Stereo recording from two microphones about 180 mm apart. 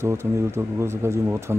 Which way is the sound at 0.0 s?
15° right (ahead or behind).